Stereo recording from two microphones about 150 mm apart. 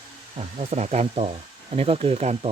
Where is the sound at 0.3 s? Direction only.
45° right (ahead or behind).